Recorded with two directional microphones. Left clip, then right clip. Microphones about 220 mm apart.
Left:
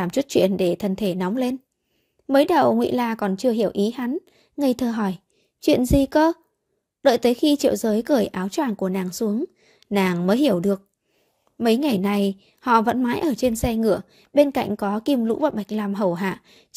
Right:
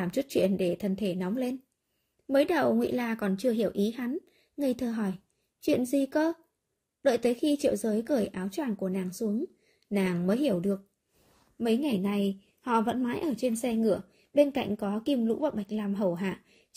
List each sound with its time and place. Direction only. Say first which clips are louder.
0.0 s a woman's voice: left 8 dB; 40° left (ahead or behind)